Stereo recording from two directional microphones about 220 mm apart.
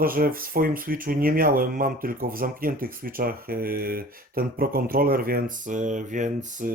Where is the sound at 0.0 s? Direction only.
40° right (ahead or behind).